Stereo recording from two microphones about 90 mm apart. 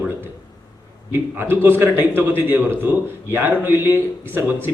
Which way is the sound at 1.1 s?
25° right (ahead or behind).